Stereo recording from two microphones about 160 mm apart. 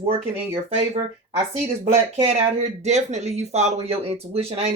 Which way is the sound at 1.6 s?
40° right (ahead or behind).